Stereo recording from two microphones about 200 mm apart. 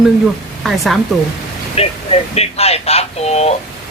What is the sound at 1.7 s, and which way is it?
Speech, 30° left (ahead or behind).